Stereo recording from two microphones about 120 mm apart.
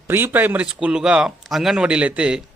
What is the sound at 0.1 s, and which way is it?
Speech, 15° right (ahead or behind).